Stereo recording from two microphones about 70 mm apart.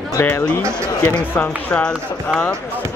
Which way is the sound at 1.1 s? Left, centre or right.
Centre.